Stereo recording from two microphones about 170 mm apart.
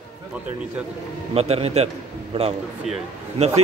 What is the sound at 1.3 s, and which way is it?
A man's voice, 35° right (ahead or behind).